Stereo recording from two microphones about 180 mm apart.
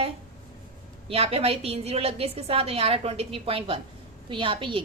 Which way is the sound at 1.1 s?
35° right (ahead or behind).